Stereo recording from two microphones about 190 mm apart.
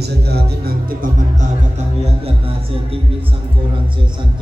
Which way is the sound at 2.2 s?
30° right (ahead or behind).